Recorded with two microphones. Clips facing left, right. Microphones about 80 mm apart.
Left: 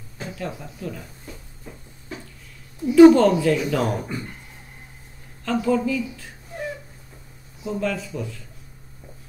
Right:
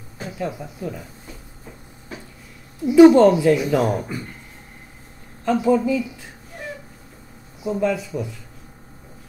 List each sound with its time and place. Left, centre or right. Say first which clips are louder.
0.2 s speech: right 3 dB; centre
2.8 s speech: right 1 dB; centre
5.4 s speech: right 3 dB; centre
7.6 s speech: right 4 dB; centre